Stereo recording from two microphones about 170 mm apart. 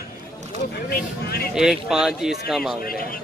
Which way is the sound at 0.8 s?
65° left (ahead or behind).